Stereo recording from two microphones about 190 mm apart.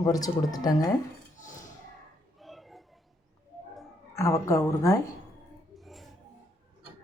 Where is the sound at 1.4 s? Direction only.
40° left (ahead or behind).